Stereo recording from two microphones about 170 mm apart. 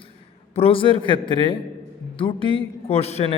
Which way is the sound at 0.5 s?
35° left (ahead or behind).